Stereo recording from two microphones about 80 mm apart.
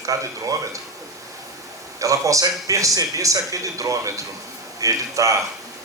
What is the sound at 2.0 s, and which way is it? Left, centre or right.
Speech, right.